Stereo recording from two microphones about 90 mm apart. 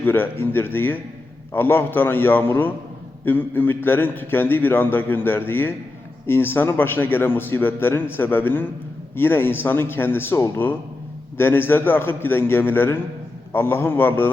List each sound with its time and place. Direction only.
0.0 s a man's voice: 25° left (ahead or behind)